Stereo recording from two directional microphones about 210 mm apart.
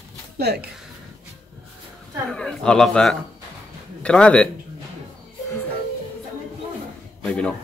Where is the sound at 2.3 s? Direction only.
5° left (ahead or behind).